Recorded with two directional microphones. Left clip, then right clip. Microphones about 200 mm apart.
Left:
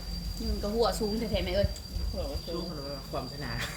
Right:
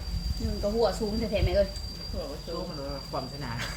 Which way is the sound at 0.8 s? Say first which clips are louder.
Even; 20° left (ahead or behind).